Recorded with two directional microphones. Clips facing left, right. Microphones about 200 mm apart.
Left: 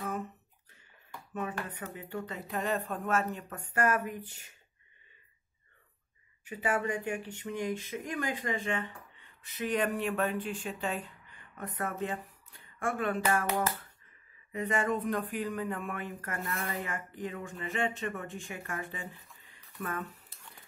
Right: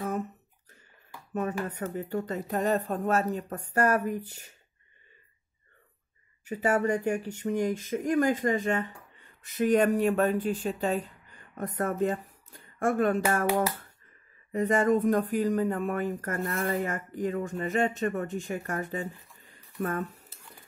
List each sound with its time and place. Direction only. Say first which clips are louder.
1.3 s speech: right 6 dB; 40° right (ahead or behind)
6.4 s speech: right 6 dB; 40° right (ahead or behind)
14.5 s speech: right 7 dB; 40° right (ahead or behind)
19.4 s a sound: right 8 dB; 40° right (ahead or behind)